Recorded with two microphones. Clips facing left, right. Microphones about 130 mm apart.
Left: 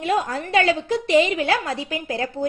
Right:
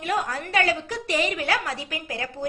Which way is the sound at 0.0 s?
25° left (ahead or behind).